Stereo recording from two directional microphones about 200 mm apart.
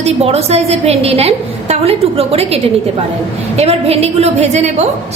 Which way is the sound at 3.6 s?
30° right (ahead or behind).